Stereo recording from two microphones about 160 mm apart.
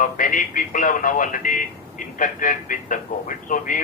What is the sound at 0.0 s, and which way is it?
A man's voice, 55° left (ahead or behind).